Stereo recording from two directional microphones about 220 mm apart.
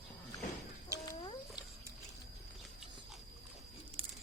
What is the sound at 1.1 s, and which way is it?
Cat, 20° left (ahead or behind).